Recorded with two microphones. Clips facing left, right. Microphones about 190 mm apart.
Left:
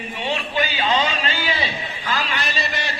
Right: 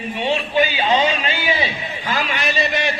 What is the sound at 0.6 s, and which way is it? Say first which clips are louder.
A man's voice: right 4 dB; 15° right (ahead or behind).